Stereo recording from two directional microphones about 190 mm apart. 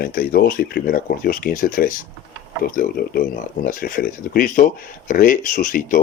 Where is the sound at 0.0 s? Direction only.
50° left (ahead or behind).